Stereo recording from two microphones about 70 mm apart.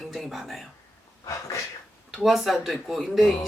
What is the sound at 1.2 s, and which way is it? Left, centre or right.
Speech, left.